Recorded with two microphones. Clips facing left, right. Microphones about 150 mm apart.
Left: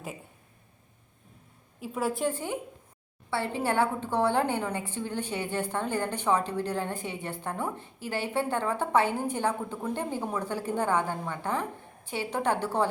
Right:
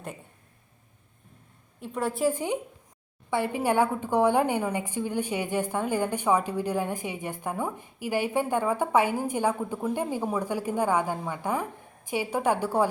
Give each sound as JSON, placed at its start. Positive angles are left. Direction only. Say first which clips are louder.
{"t": 1.8, "sound": "a woman's voice", "louder": "right 2 dB", "side_deg": 0}
{"t": 2.3, "sound": "a woman's voice", "louder": "right 4 dB", "side_deg": -15}